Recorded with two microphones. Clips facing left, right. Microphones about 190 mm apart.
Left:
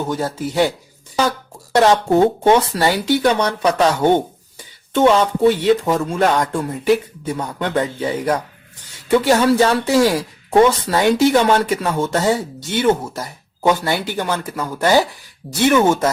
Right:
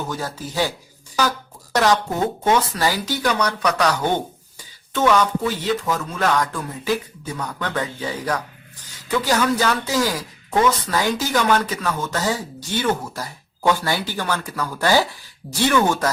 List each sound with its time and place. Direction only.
0.1 s speech: 25° left (ahead or behind)
1.7 s speech: 25° left (ahead or behind)